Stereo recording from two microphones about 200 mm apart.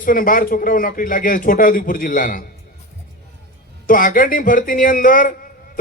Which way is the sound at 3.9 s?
45° left (ahead or behind).